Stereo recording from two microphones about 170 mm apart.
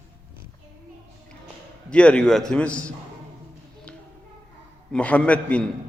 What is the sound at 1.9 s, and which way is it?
A man's voice, 5° left (ahead or behind).